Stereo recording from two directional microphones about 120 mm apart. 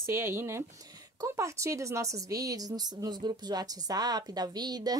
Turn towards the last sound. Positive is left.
turn(degrees=-35)  # may be behind; listen again after turning